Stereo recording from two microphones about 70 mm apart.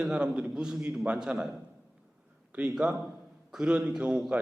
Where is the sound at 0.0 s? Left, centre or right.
Centre.